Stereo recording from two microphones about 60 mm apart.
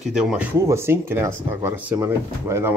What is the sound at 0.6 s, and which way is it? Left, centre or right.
Speech, right.